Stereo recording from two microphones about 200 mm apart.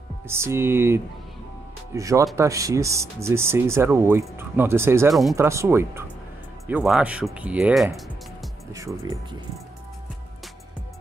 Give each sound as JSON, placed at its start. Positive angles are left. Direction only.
{"t": 0.3, "sound": "speech", "side_deg": -10}
{"t": 8.7, "sound": "speech", "side_deg": -15}